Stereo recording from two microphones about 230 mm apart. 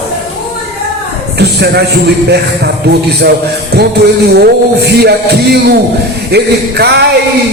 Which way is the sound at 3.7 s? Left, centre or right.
Right.